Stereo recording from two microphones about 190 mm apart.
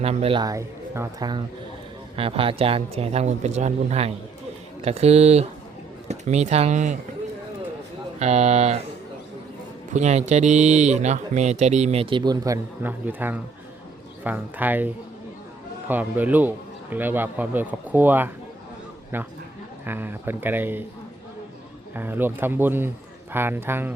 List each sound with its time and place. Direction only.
0.0 s a man's voice: 30° right (ahead or behind)
2.1 s speech: 30° right (ahead or behind)
8.2 s speech: 35° right (ahead or behind)
9.9 s speech: 35° right (ahead or behind); by 12.5 s 20° right (ahead or behind)
12.8 s a man's voice: 10° right (ahead or behind)
21.9 s a man's voice: 10° right (ahead or behind)